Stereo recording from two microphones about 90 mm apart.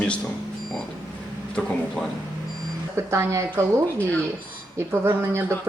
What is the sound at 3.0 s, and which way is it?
Speech, 30° right (ahead or behind).